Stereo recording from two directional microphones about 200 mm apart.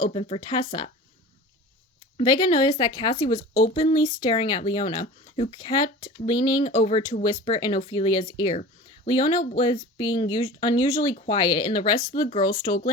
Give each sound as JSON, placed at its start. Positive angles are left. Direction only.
{"t": 0.0, "sound": "speech", "side_deg": 30}
{"t": 2.1, "sound": "speech", "side_deg": 20}